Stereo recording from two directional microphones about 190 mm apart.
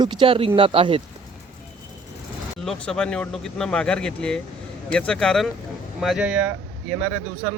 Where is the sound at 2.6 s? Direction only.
5° left (ahead or behind).